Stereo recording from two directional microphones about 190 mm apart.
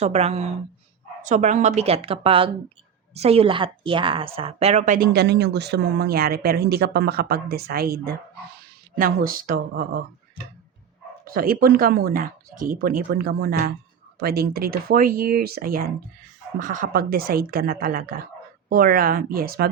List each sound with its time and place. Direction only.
0.0 s a woman's voice: 35° right (ahead or behind)
5.1 s speech: 60° right (ahead or behind)
11.3 s speech: 50° right (ahead or behind)